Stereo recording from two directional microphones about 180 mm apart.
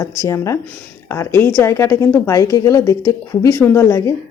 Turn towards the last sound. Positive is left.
turn(degrees=15)  # may be behind; listen again after turning